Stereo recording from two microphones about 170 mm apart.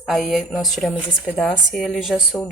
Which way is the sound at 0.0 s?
Centre (ahead or behind).